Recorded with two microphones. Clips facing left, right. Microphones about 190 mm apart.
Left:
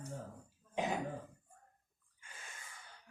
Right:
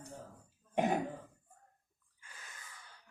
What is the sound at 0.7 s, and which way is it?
Throat clearing, 55° right (ahead or behind).